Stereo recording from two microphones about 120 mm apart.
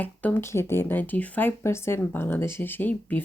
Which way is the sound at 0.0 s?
15° left (ahead or behind).